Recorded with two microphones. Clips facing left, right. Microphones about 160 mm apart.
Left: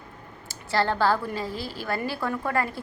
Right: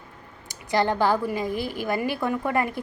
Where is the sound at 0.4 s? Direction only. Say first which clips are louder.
Right 2 dB; 20° right (ahead or behind).